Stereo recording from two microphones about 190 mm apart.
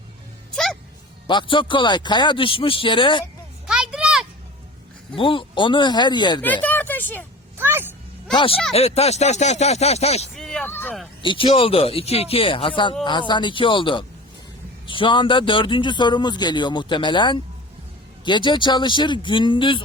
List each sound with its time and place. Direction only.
0.5 s music: centre (ahead or behind)
1.3 s a man's voice: 25° left (ahead or behind)
3.7 s a sound: 5° right (ahead or behind)
5.1 s a man's voice: 25° left (ahead or behind)
6.4 s speech: 10° left (ahead or behind)
7.6 s a sound: 10° right (ahead or behind)
8.3 s speech: 25° left (ahead or behind)
10.3 s a sound: centre (ahead or behind)
11.2 s a man's voice: 25° left (ahead or behind)